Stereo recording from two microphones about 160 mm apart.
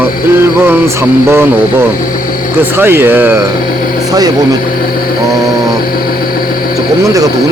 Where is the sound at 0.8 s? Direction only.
15° right (ahead or behind).